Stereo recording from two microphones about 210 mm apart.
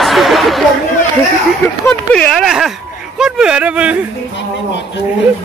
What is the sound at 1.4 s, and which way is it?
Speech, 5° left (ahead or behind).